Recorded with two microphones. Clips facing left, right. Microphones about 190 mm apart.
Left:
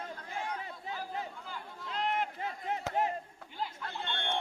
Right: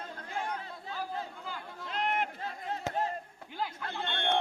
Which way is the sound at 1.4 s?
75° right (ahead or behind).